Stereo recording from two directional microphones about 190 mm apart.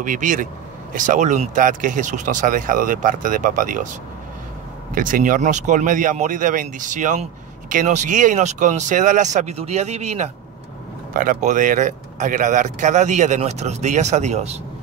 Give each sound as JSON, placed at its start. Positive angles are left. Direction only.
{"t": 0.0, "sound": "speech", "side_deg": -45}
{"t": 4.9, "sound": "speech", "side_deg": -45}